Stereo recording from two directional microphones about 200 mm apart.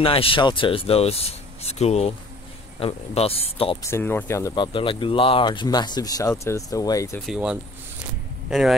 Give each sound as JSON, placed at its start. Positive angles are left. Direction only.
{"t": 0.0, "sound": "speech", "side_deg": 30}
{"t": 3.9, "sound": "speech", "side_deg": 10}
{"t": 7.2, "sound": "speech", "side_deg": 0}